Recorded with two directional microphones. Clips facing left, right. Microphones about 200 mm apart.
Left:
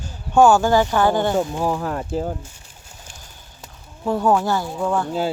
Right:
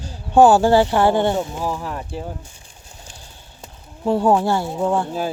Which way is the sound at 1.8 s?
45° left (ahead or behind).